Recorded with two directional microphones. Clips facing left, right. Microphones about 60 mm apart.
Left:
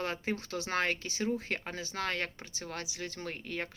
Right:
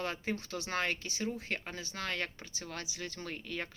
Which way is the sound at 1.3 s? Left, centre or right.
Left.